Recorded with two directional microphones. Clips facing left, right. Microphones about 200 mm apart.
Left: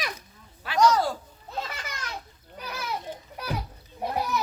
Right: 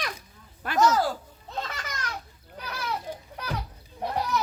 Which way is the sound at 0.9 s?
5° right (ahead or behind).